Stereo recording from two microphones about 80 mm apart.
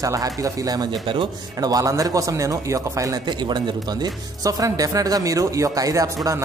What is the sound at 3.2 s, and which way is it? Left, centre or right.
Speech, right.